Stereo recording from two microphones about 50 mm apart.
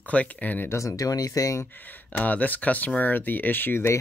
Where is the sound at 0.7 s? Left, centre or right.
Left.